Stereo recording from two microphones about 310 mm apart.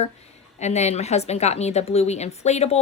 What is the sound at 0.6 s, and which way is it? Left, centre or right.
A woman's voice, left.